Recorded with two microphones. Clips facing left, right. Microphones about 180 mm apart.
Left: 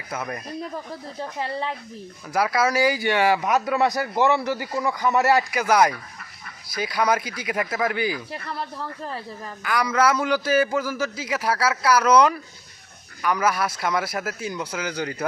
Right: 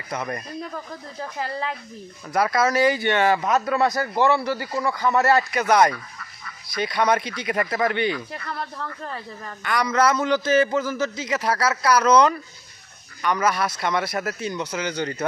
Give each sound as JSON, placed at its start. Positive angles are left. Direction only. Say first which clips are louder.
{"t": 0.1, "sound": "speech", "louder": "right 1 dB", "side_deg": 5}
{"t": 0.7, "sound": "speech", "louder": "left 1 dB", "side_deg": 30}
{"t": 2.3, "sound": "a man's voice", "louder": "right 1 dB", "side_deg": 5}
{"t": 8.3, "sound": "speech", "louder": "even", "side_deg": 30}
{"t": 9.6, "sound": "a man's voice", "louder": "even", "side_deg": 5}